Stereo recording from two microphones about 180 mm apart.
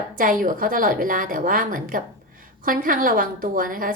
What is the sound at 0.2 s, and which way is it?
A woman's voice, 50° right (ahead or behind).